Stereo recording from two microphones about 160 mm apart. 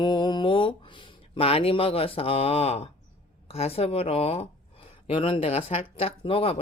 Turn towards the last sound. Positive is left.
turn(degrees=35)  # may be behind; listen again after turning